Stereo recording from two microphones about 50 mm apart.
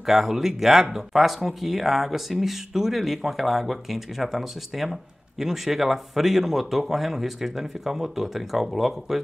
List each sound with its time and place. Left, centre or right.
0.0 s speech: centre